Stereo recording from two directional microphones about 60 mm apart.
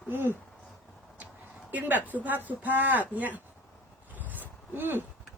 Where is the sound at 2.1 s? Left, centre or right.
Right.